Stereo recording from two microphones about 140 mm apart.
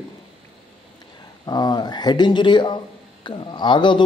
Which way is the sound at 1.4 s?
30° left (ahead or behind).